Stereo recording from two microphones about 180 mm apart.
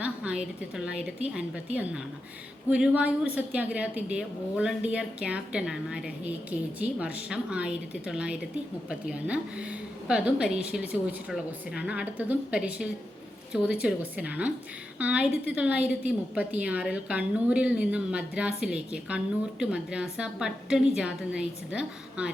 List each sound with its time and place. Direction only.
0.0 s a woman's voice: 5° right (ahead or behind)